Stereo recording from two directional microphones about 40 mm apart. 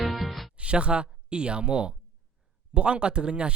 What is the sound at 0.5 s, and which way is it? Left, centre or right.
Speech, right.